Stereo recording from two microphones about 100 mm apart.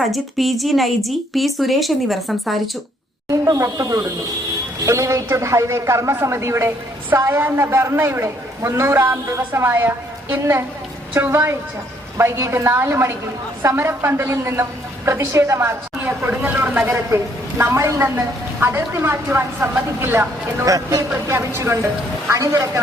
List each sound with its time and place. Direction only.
0.1 s a woman's voice: centre (ahead or behind)
3.4 s speech: 35° right (ahead or behind)
11.1 s speech: 20° right (ahead or behind)
17.6 s speech: 30° right (ahead or behind)
20.7 s speech: 35° right (ahead or behind)